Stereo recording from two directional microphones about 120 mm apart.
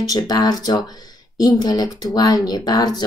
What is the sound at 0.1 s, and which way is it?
Speech, 35° left (ahead or behind).